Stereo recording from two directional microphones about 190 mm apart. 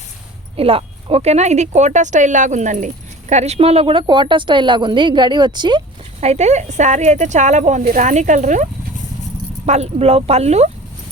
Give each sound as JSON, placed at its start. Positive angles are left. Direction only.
{"t": 0.5, "sound": "speech", "side_deg": -30}
{"t": 6.1, "sound": "speech", "side_deg": -35}
{"t": 9.6, "sound": "speech", "side_deg": -35}